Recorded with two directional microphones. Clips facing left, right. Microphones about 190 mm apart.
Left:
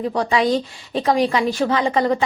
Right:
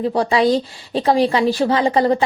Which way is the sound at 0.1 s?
30° right (ahead or behind).